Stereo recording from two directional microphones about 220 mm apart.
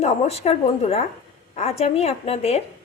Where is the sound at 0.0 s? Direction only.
30° left (ahead or behind).